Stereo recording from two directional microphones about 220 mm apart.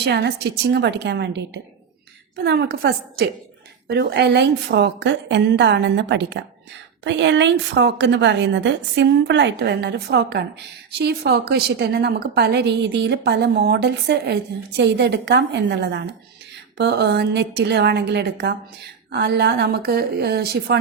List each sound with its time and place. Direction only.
0.0 s a woman's voice: 50° right (ahead or behind)